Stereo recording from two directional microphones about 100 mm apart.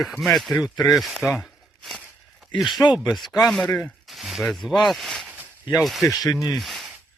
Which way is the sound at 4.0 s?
Centre (ahead or behind).